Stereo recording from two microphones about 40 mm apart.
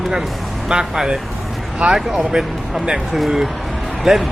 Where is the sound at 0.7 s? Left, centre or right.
Right; by 4.3 s centre.